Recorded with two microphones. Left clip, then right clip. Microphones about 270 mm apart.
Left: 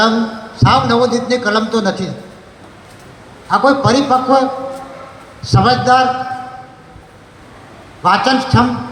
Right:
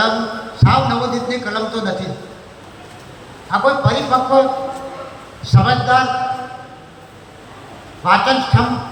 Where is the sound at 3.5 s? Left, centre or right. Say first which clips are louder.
Left 4 dB; left.